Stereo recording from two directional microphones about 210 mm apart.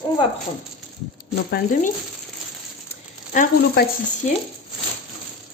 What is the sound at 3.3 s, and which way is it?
Speech, 50° left (ahead or behind).